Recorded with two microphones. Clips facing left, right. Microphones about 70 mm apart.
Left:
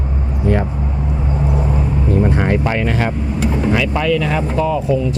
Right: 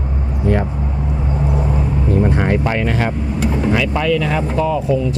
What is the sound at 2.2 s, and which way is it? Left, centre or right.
Speech, left.